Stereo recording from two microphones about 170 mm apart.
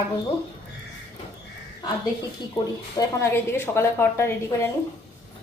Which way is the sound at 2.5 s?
20° left (ahead or behind).